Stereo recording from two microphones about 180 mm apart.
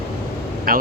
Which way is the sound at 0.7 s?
55° right (ahead or behind).